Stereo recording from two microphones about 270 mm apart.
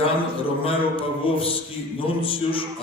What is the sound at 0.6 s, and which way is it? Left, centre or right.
A man's voice, left.